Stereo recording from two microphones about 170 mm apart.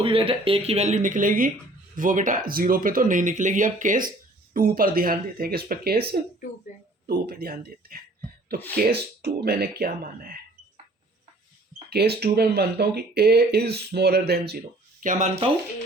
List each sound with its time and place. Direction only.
0.0 s speech: 30° right (ahead or behind); by 6.2 s 65° right (ahead or behind)
6.7 s speech: 45° left (ahead or behind)
7.1 s speech: 65° right (ahead or behind)
11.9 s speech: 70° right (ahead or behind)
15.0 s speech: 50° right (ahead or behind)